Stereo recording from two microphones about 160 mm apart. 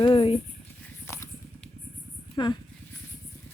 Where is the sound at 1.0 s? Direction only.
15° left (ahead or behind).